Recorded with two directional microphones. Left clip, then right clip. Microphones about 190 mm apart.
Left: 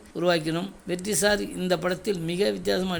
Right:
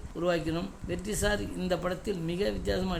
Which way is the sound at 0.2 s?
20° left (ahead or behind).